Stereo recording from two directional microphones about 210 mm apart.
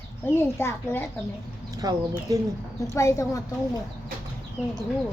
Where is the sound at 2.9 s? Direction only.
15° left (ahead or behind).